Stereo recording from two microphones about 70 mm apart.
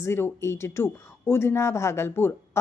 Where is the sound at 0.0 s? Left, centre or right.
Left.